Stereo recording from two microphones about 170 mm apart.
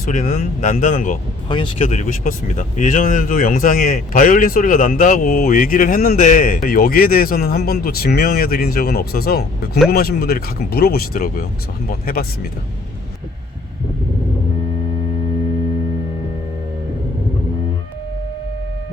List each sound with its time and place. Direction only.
0.0 s speech: 45° left (ahead or behind)
1.5 s speech: 30° left (ahead or behind)
1.8 s speech: 40° left (ahead or behind); by 12.5 s 60° left (ahead or behind)